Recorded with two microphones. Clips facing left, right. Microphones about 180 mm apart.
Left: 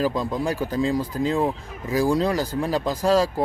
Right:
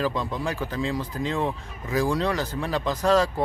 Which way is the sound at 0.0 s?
40° left (ahead or behind).